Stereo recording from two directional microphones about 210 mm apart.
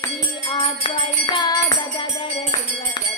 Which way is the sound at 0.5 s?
25° left (ahead or behind).